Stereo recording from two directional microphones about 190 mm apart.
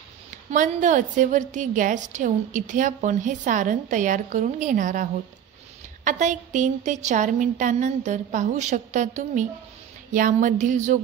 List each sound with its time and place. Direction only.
0.5 s a woman's voice: 40° right (ahead or behind)